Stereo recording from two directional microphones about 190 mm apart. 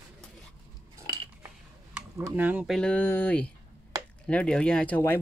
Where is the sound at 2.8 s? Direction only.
5° left (ahead or behind).